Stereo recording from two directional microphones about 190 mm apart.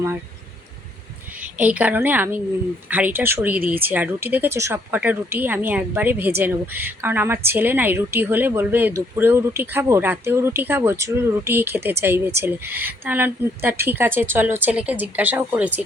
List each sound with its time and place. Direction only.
1.4 s a woman's voice: 5° right (ahead or behind)